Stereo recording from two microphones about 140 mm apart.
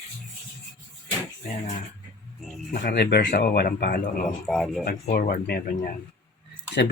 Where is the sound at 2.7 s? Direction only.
85° left.